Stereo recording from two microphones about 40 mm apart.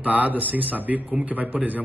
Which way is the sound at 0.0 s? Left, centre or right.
Right.